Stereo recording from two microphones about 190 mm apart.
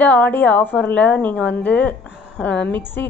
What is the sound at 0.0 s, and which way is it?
A woman's voice, 10° left (ahead or behind).